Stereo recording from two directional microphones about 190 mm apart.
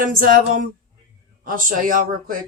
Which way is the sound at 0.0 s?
45° right (ahead or behind).